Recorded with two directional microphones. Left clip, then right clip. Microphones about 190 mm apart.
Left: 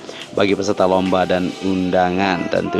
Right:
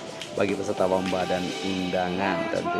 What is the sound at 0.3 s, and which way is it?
Speech, 45° left (ahead or behind).